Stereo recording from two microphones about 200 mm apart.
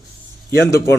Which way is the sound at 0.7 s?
15° left (ahead or behind).